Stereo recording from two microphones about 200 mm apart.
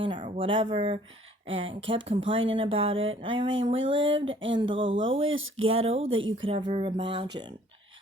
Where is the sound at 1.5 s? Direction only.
25° right (ahead or behind).